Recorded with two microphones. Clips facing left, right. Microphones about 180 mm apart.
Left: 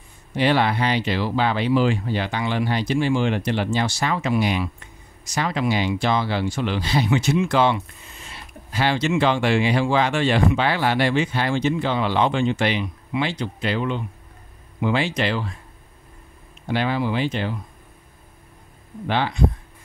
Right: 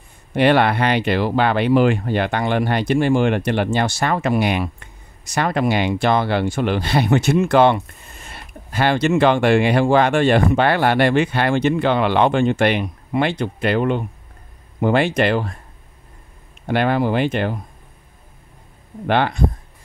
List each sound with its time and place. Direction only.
0.3 s speech: 60° right (ahead or behind)
16.6 s speech: 55° right (ahead or behind)
19.0 s speech: 60° right (ahead or behind)